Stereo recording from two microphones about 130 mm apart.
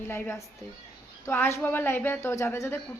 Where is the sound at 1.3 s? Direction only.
20° left (ahead or behind).